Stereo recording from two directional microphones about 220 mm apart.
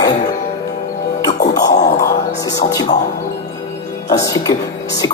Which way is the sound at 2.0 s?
15° left (ahead or behind).